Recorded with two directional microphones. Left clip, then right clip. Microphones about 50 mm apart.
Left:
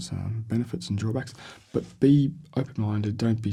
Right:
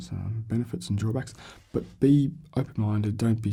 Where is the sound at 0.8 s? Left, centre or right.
Right.